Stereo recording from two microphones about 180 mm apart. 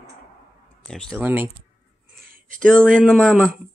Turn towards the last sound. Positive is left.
turn(degrees=5)  # may be behind; listen again after turning